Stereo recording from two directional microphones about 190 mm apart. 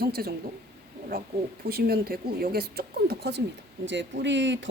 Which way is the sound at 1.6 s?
55° right (ahead or behind).